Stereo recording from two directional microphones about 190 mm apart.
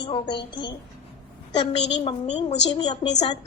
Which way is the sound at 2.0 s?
30° left (ahead or behind).